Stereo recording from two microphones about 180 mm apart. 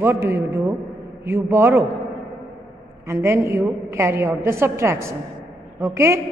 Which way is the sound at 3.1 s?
15° right (ahead or behind).